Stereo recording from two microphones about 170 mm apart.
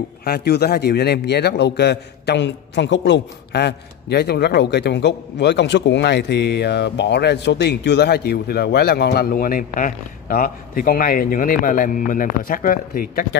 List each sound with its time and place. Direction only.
0.2 s a man's voice: 70° left (ahead or behind)